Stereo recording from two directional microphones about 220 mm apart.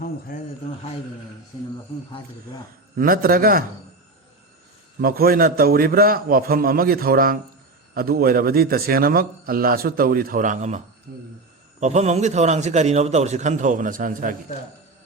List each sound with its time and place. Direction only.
0.0 s a sound: 40° left (ahead or behind)
3.0 s a man's voice: 40° right (ahead or behind)
4.9 s a man's voice: 45° right (ahead or behind)
11.1 s a man's voice: 45° right (ahead or behind)
11.8 s a man's voice: 30° right (ahead or behind)